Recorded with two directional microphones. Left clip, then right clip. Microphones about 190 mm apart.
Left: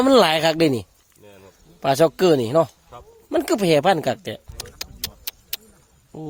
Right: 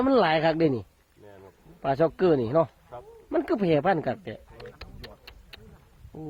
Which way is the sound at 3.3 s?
25° left (ahead or behind).